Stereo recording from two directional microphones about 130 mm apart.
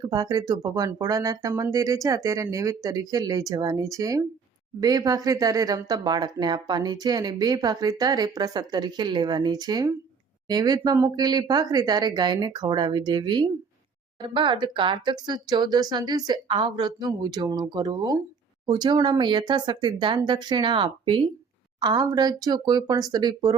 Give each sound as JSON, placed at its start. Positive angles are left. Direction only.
{"t": 0.0, "sound": "speech", "side_deg": -30}